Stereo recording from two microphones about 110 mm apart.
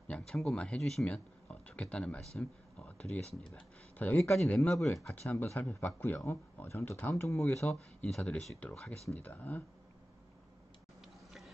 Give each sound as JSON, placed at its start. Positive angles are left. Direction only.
{"t": 0.1, "sound": "speech", "side_deg": 5}
{"t": 3.5, "sound": "a sound", "side_deg": 15}
{"t": 4.2, "sound": "speech", "side_deg": 0}
{"t": 5.3, "sound": "speech", "side_deg": 15}